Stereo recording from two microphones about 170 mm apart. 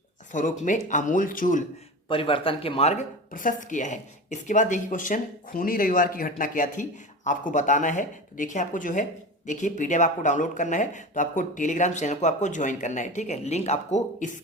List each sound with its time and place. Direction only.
0.3 s speech: 50° left (ahead or behind)
2.0 s speech: 30° left (ahead or behind)